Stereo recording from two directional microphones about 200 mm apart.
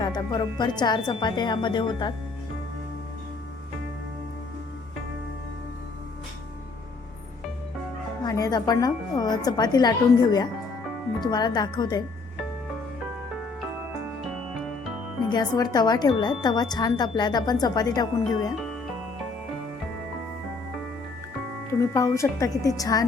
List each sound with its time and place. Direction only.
0.0 s speech: 20° left (ahead or behind)
8.2 s speech: 20° left (ahead or behind)
15.3 s speech: 20° left (ahead or behind)
21.7 s speech: 15° left (ahead or behind)